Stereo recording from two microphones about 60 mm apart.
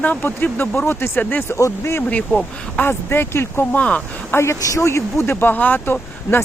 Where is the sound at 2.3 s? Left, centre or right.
Left.